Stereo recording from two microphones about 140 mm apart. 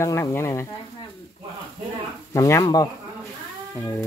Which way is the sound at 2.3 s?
25° left (ahead or behind).